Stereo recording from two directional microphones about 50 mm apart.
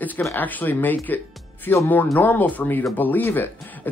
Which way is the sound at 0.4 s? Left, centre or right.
Left.